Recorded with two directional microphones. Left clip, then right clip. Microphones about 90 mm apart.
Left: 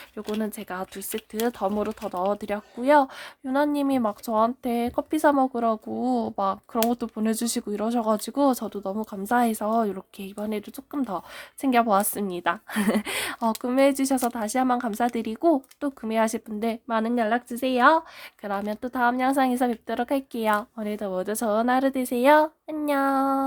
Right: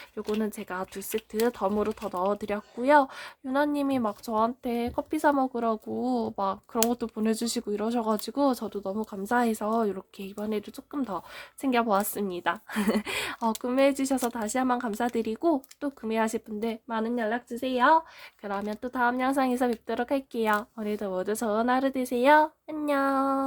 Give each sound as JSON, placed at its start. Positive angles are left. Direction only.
{"t": 0.3, "sound": "speech", "side_deg": 15}
{"t": 16.6, "sound": "a woman's voice", "side_deg": 55}
{"t": 18.4, "sound": "speech", "side_deg": 40}